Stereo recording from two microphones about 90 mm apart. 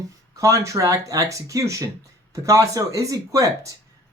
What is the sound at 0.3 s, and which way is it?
Speech, 35° right (ahead or behind).